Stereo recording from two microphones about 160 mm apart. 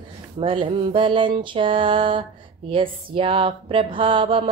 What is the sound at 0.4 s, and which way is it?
Speech, 35° right (ahead or behind).